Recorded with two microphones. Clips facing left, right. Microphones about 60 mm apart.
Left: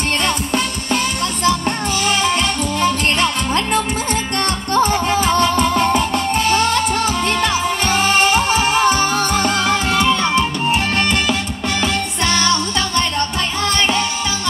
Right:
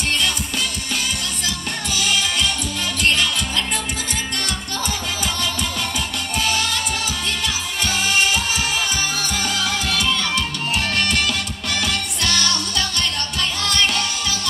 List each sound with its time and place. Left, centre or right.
1.4 s music: left